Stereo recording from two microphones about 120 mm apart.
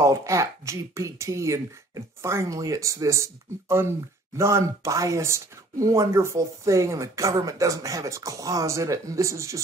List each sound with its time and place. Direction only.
0.0 s speech: 25° right (ahead or behind)